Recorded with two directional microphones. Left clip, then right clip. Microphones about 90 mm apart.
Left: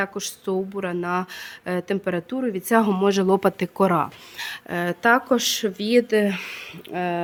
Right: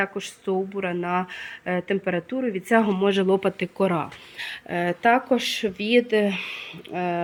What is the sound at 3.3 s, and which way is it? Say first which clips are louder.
Speech: left 2 dB; 55° left (ahead or behind).